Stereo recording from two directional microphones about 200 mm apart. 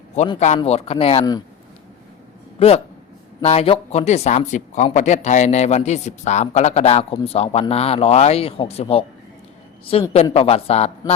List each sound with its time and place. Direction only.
0.3 s speech: 35° left (ahead or behind)
2.6 s a man's voice: 30° left (ahead or behind)